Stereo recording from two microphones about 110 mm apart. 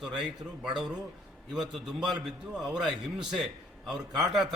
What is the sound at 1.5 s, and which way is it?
A man's voice, 5° right (ahead or behind).